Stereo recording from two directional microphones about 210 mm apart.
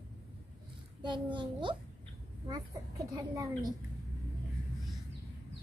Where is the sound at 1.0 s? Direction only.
20° right (ahead or behind).